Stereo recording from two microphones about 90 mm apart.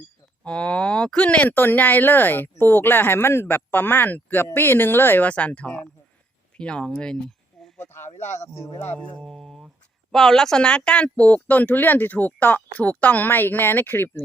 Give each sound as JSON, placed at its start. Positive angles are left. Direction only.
{"t": 0.4, "sound": "speech", "side_deg": 10}
{"t": 7.8, "sound": "speech", "side_deg": 25}
{"t": 9.0, "sound": "speech", "side_deg": 5}